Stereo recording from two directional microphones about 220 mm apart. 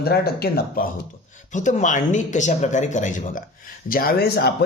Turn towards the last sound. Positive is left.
turn(degrees=45)  # may be behind; listen again after turning